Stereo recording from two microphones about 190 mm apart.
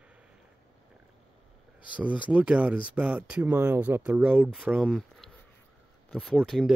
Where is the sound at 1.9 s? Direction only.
5° right (ahead or behind).